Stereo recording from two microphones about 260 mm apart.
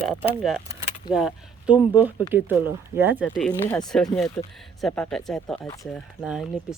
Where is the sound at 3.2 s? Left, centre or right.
Centre.